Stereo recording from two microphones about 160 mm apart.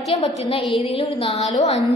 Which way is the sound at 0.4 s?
35° left (ahead or behind).